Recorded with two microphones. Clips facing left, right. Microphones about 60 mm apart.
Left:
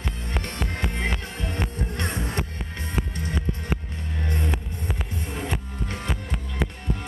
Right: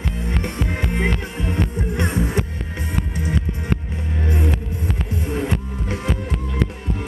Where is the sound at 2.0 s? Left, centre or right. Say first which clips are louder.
Right 7 dB; centre.